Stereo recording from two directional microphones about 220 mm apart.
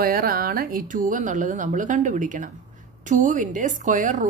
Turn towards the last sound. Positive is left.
turn(degrees=-35)  # may be behind; listen again after turning